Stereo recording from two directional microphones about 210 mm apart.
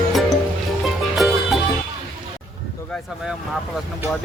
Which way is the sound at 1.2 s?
Centre (ahead or behind).